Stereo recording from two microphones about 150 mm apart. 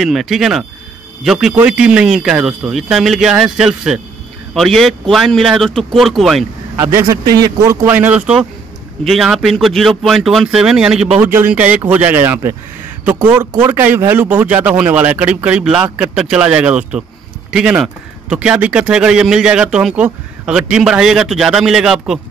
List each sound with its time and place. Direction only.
0.0 s speech: centre (ahead or behind)
6.8 s speech: 15° right (ahead or behind)